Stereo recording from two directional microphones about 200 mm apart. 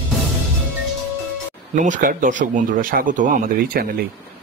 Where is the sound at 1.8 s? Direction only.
45° right (ahead or behind).